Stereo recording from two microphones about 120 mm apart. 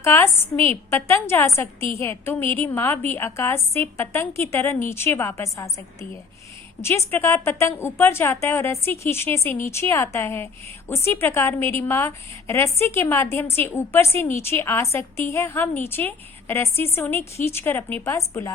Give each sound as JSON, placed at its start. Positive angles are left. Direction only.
{"t": 0.0, "sound": "a woman's voice", "side_deg": 20}
{"t": 0.5, "sound": "a woman's voice", "side_deg": -55}
{"t": 0.9, "sound": "a woman's voice", "side_deg": 20}